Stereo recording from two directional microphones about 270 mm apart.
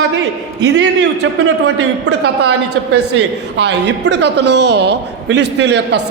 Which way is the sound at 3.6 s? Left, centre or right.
Right.